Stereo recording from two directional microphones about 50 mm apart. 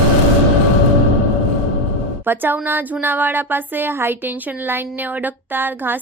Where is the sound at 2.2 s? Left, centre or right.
Right.